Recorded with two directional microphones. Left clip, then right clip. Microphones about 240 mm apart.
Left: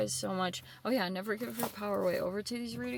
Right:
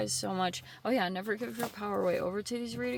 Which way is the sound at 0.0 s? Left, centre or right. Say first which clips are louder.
Right 1 dB; centre.